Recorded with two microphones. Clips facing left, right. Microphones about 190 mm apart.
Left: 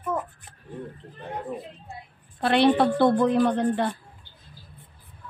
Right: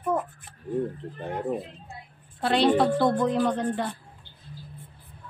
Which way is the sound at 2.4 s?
60° left (ahead or behind).